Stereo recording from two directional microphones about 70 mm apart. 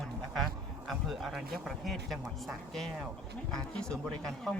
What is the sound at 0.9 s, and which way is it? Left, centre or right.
Speech, centre.